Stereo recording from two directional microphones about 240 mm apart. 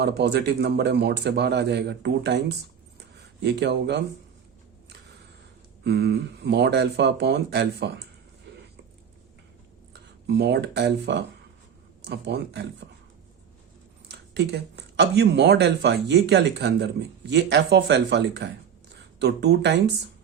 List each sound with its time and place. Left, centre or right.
0.0 s speech: right
5.8 s speech: right
9.9 s speech: right
14.3 s speech: right